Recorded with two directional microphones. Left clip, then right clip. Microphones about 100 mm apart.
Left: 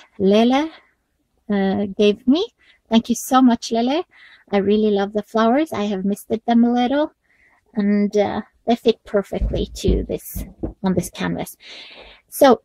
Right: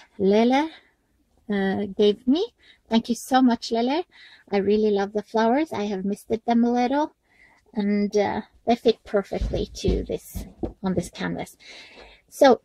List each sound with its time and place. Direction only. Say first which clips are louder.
0.2 s a woman's voice: left 3 dB; 25° right (ahead or behind)